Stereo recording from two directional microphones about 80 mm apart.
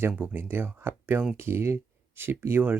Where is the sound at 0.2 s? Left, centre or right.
Right.